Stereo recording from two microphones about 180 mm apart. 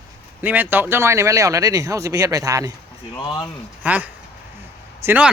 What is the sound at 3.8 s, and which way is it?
Speech, 10° right (ahead or behind).